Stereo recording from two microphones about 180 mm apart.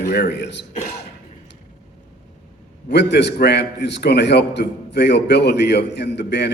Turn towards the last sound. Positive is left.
turn(degrees=70)  # may be behind; listen again after turning